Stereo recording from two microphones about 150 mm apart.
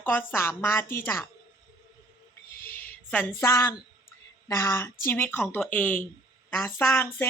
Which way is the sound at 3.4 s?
20° left (ahead or behind).